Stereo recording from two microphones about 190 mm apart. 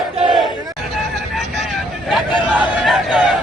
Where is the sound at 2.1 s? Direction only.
5° right (ahead or behind).